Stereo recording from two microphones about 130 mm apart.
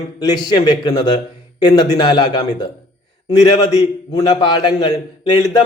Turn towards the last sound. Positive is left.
turn(degrees=35)  # may be behind; listen again after turning